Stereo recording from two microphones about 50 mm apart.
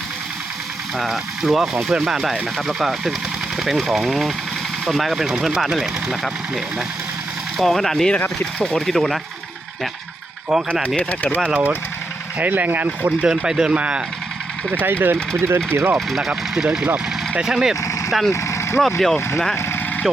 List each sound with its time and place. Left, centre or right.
0.9 s speech: centre
7.6 s speech: centre
10.5 s speech: centre
10.8 s speech: left
11.4 s speech: right
13.2 s speech: centre
14.7 s speech: right
16.0 s speech: centre
17.4 s speech: centre
18.1 s speech: centre
18.3 s vehicle: left
18.8 s speech: centre